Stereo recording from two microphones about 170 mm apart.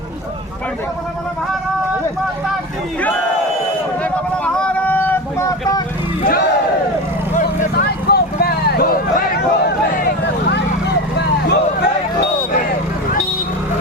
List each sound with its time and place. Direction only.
4.0 s vehicle: 5° left (ahead or behind)
7.3 s vehicle: 65° left (ahead or behind)
11.4 s music: 85° left